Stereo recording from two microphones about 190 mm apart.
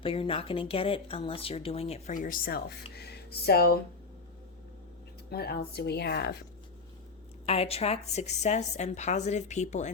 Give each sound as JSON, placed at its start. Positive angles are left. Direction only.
{"t": 0.0, "sound": "speech", "side_deg": 30}
{"t": 5.3, "sound": "speech", "side_deg": 55}
{"t": 7.4, "sound": "a woman's voice", "side_deg": 30}